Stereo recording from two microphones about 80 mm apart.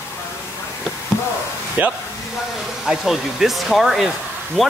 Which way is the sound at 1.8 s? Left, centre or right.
Right.